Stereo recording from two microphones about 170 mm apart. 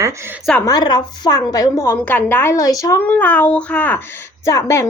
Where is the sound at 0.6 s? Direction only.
20° left (ahead or behind).